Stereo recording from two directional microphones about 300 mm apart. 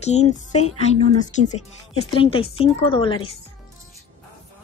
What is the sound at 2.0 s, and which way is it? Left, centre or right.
A woman's voice, centre.